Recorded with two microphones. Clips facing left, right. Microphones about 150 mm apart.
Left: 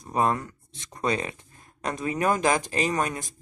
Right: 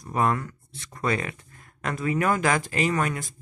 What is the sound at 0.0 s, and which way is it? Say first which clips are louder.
Speech: even; 20° left (ahead or behind).